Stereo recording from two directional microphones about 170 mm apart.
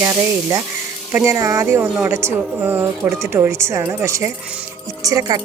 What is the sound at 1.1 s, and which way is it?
A woman's voice, 15° right (ahead or behind).